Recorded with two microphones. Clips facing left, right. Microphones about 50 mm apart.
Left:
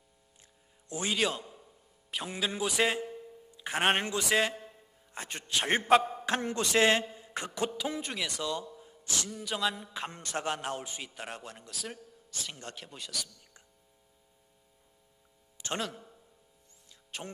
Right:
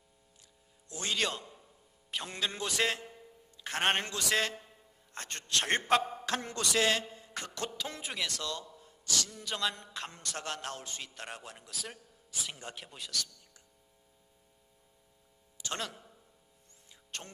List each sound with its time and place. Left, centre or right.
0.9 s a man's voice: centre
6.2 s a man's voice: left
8.0 s a man's voice: centre
8.3 s a man's voice: centre
10.1 s a man's voice: left; by 13.3 s centre
17.1 s a man's voice: centre